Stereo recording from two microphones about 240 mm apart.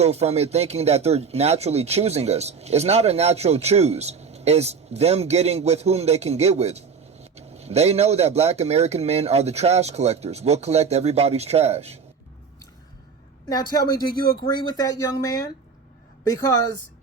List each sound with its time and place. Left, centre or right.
0.0 s speech: right
13.5 s speech: centre